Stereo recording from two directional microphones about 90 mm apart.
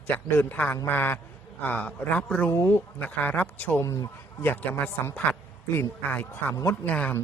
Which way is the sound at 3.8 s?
35° left (ahead or behind).